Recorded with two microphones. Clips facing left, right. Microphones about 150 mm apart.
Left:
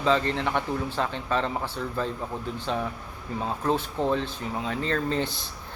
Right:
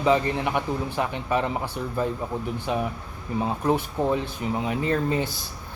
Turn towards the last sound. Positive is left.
turn(degrees=-15)  # may be behind; listen again after turning